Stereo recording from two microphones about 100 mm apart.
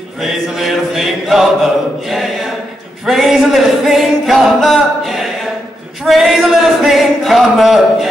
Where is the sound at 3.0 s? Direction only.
Centre (ahead or behind).